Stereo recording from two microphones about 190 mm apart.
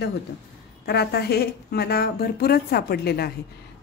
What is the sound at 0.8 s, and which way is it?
A woman's voice, 60° left (ahead or behind).